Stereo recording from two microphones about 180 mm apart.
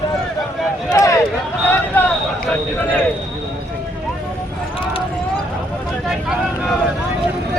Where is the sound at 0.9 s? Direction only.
20° left (ahead or behind).